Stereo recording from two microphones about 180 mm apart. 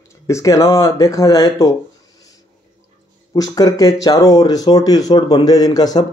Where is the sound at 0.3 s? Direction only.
15° left (ahead or behind).